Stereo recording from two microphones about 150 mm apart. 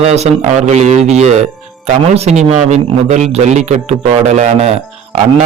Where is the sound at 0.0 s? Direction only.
45° right (ahead or behind).